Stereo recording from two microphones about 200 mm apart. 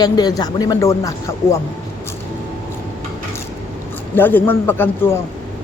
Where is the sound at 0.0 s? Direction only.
20° left (ahead or behind).